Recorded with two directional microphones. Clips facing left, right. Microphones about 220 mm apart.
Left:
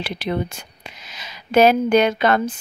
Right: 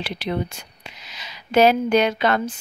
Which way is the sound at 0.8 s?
50° left (ahead or behind).